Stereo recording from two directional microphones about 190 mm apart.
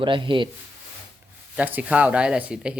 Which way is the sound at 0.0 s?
25° right (ahead or behind).